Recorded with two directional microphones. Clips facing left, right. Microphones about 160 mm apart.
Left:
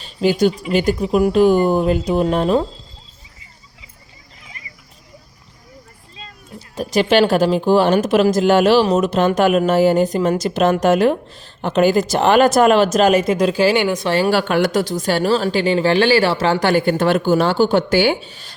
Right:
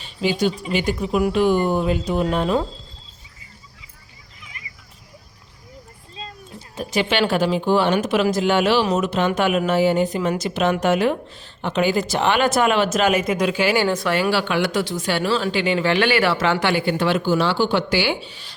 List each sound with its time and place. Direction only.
0.0 s speech: 40° left (ahead or behind)
6.6 s speech: 40° left (ahead or behind)
13.8 s speech: 15° left (ahead or behind)
14.3 s speech: 45° left (ahead or behind)